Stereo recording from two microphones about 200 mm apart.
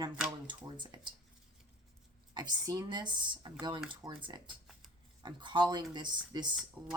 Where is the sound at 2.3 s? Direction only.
20° right (ahead or behind).